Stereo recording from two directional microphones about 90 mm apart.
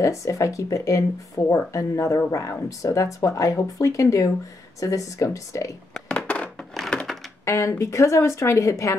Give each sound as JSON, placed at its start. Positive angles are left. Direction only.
{"t": 0.0, "sound": "speech", "side_deg": 35}
{"t": 6.0, "sound": "crushing", "side_deg": 10}
{"t": 6.7, "sound": "a sound", "side_deg": 5}
{"t": 7.4, "sound": "speech", "side_deg": 35}